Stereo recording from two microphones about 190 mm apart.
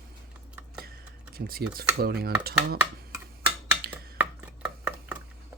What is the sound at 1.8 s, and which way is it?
Dishes, 55° right (ahead or behind).